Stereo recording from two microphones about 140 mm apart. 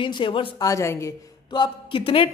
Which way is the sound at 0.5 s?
25° left (ahead or behind).